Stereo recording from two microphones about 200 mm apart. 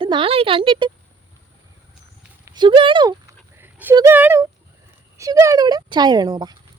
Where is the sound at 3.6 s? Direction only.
10° right (ahead or behind).